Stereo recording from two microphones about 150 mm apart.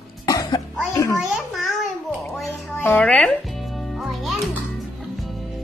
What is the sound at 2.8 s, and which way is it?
Speech, 10° left (ahead or behind).